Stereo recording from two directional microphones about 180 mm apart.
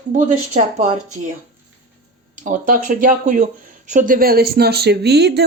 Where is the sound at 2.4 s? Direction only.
45° right (ahead or behind); by 5.5 s 65° right (ahead or behind).